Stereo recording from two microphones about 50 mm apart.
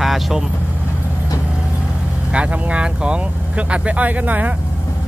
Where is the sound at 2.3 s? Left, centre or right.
Right.